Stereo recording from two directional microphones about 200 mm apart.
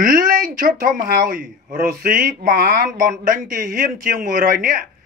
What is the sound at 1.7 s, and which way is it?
Speech, 40° right (ahead or behind).